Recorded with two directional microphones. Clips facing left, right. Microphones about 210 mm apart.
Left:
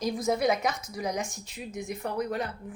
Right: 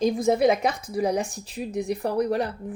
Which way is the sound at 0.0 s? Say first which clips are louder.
Right 6 dB; 25° right (ahead or behind).